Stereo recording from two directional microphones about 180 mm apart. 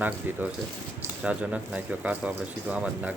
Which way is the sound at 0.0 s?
10° right (ahead or behind).